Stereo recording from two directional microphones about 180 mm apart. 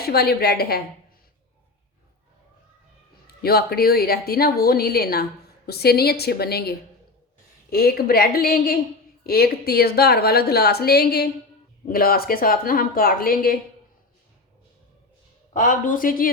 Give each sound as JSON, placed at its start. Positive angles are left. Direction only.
{"t": 0.0, "sound": "a woman's voice", "side_deg": 60}
{"t": 3.2, "sound": "a woman's voice", "side_deg": 60}
{"t": 15.5, "sound": "a woman's voice", "side_deg": 45}